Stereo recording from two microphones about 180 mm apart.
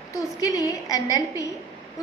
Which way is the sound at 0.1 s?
20° left (ahead or behind).